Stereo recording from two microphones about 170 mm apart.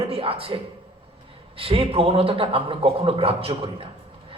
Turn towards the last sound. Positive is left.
turn(degrees=-35)  # may be behind; listen again after turning